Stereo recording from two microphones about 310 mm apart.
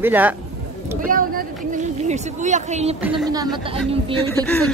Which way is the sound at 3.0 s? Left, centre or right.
Centre.